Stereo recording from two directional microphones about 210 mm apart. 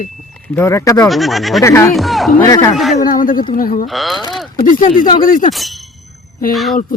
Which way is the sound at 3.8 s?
Centre (ahead or behind).